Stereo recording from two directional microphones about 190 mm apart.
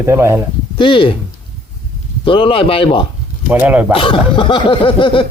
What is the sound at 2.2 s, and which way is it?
Speech, 30° left (ahead or behind).